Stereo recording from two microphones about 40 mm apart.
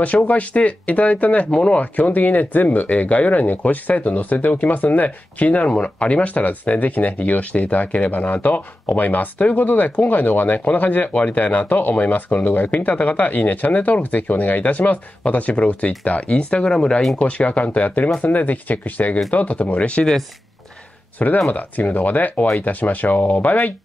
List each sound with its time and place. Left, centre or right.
0.0 s speech: left
1.5 s speech: left
1.8 s speech: left; by 17.0 s centre
17.2 s speech: left
21.5 s speech: left